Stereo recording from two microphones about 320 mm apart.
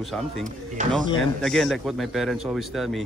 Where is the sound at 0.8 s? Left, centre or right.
Right.